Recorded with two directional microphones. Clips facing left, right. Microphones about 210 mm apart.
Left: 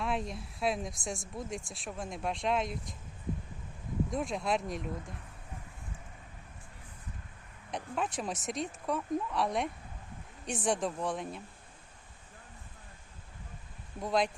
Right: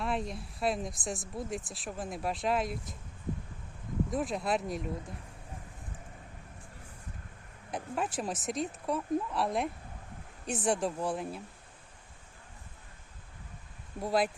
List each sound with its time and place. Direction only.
0.0 s speech: centre (ahead or behind)
4.1 s speech: centre (ahead or behind)
7.7 s speech: 5° right (ahead or behind)
14.0 s speech: 5° right (ahead or behind)